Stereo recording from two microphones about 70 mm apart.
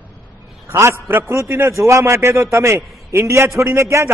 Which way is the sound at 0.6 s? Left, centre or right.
Right.